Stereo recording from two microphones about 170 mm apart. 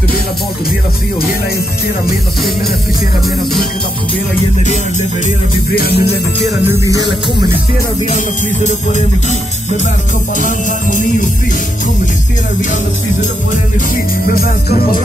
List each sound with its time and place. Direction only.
5.8 s music: 65° left (ahead or behind)
6.7 s music: 20° right (ahead or behind)
8.6 s music: 45° left (ahead or behind)
10.4 s music: 50° left (ahead or behind)
14.2 s music: 60° left (ahead or behind)